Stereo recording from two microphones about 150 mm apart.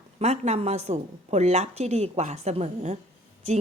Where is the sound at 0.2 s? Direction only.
45° right (ahead or behind).